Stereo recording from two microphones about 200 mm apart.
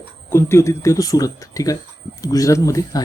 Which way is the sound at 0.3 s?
10° left (ahead or behind).